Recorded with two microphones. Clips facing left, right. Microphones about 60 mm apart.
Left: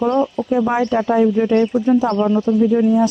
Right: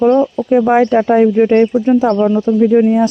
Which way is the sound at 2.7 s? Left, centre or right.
Right.